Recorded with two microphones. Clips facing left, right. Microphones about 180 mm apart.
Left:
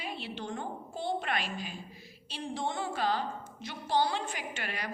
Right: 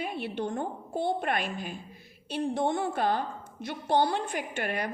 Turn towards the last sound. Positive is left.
turn(degrees=-55)  # may be behind; listen again after turning